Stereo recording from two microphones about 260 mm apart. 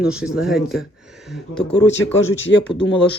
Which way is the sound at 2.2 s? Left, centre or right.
Left.